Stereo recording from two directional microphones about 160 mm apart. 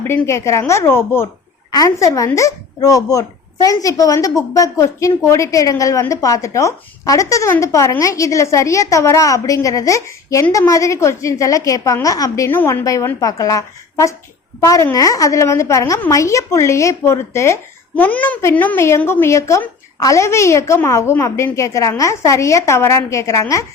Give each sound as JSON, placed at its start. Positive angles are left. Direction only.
{"t": 0.0, "sound": "a woman's voice", "side_deg": 15}